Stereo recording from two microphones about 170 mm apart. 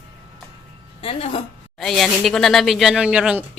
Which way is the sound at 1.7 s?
Centre (ahead or behind).